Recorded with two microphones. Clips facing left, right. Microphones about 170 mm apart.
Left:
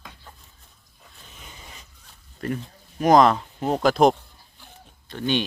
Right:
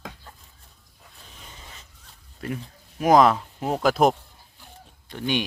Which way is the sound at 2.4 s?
5° right (ahead or behind).